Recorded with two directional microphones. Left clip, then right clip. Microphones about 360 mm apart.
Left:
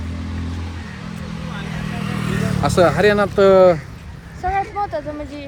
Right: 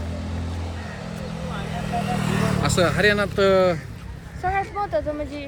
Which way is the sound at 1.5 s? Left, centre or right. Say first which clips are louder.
Right 2 dB; right.